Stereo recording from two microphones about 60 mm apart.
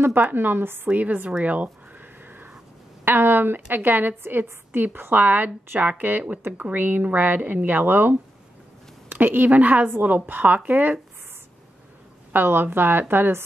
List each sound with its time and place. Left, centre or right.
0.0 s a woman's voice: right
0.8 s a woman's voice: right
1.4 s a sound: right
3.1 s a woman's voice: right
12.3 s a woman's voice: right